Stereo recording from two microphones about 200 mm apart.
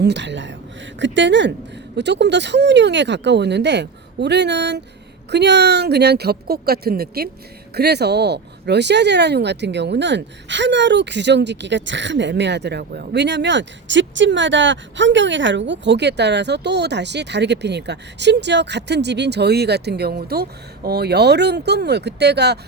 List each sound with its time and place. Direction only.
0.0 s speech: 60° right (ahead or behind)